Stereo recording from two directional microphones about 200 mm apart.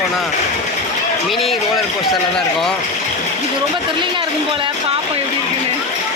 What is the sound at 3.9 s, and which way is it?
A woman's voice, 25° right (ahead or behind).